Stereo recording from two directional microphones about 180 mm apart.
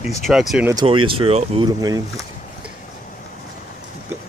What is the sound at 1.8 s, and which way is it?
Speech, 20° right (ahead or behind).